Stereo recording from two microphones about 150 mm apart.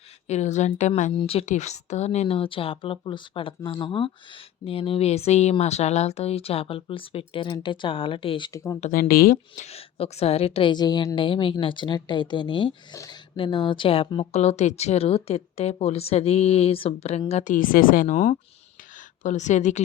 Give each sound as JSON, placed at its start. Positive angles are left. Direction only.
{"t": 0.3, "sound": "speech", "side_deg": 50}
{"t": 1.1, "sound": "speech", "side_deg": 40}
{"t": 8.9, "sound": "speech", "side_deg": 75}
{"t": 9.6, "sound": "a woman's voice", "side_deg": 45}